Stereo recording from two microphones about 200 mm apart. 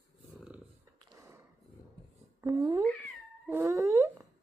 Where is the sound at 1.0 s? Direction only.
15° right (ahead or behind).